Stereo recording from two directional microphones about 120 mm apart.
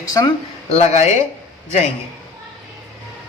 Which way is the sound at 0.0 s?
30° left (ahead or behind).